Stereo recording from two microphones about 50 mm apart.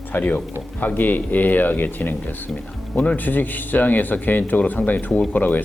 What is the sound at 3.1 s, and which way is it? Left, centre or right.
Speech, left.